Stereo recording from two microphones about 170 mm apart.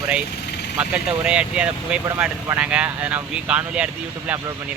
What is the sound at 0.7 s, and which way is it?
Speech, 5° right (ahead or behind).